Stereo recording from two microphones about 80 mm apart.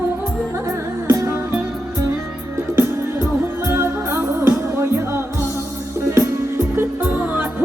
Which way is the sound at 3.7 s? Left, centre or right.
Right.